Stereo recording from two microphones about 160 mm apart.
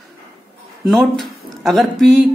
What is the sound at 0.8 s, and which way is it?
Speech, centre (ahead or behind).